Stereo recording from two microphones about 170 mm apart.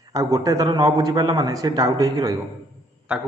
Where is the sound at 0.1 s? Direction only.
20° right (ahead or behind).